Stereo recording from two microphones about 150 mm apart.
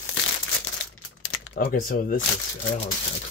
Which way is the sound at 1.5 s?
70° left (ahead or behind).